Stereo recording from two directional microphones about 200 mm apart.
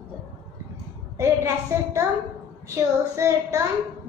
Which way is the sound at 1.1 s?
15° right (ahead or behind).